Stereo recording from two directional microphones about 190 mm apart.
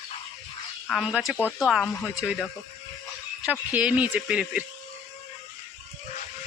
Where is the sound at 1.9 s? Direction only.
15° left (ahead or behind).